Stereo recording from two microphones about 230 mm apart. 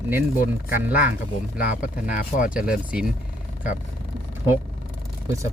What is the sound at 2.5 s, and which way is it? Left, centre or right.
Speech, centre.